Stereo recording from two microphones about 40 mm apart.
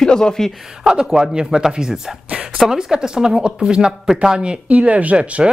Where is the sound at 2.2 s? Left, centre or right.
Right.